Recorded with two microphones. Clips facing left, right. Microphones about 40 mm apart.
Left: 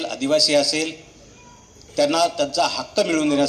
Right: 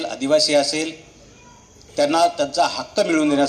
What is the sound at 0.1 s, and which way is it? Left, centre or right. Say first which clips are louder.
Speech: right 2 dB; right.